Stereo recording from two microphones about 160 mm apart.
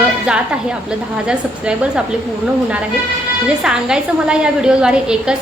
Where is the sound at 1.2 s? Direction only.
5° right (ahead or behind).